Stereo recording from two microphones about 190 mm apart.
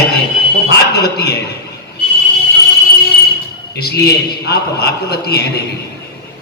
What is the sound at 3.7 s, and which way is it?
A man's voice, 60° left (ahead or behind).